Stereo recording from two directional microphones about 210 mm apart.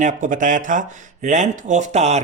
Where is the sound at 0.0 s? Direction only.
40° right (ahead or behind).